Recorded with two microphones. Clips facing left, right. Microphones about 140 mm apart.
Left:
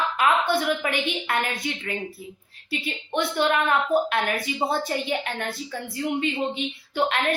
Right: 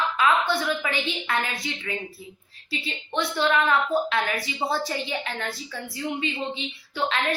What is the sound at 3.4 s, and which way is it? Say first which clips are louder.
Speech: even; 50° left (ahead or behind).